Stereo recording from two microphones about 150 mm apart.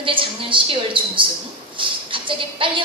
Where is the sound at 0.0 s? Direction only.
35° right (ahead or behind).